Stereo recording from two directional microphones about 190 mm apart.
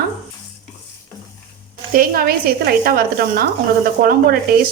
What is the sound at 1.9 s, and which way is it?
Speech, 50° right (ahead or behind).